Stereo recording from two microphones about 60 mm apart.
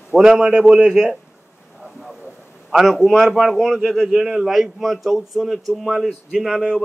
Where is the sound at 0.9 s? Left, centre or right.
Centre.